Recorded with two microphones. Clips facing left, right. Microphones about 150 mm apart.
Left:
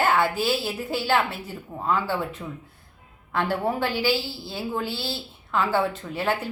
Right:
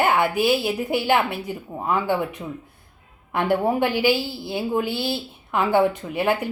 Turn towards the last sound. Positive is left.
turn(degrees=-15)  # may be behind; listen again after turning